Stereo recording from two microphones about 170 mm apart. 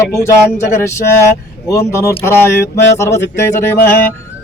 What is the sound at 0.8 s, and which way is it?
Music, 15° left (ahead or behind).